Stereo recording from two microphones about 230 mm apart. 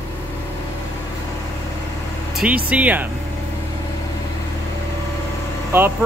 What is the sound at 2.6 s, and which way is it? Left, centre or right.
Speech, centre.